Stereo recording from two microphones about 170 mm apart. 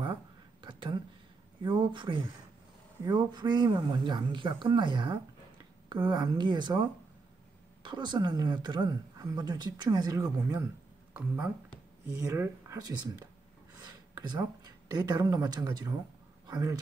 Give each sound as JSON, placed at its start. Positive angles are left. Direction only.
{"t": 0.0, "sound": "a sound", "side_deg": -30}
{"t": 1.6, "sound": "speech", "side_deg": -25}
{"t": 12.1, "sound": "speech", "side_deg": -15}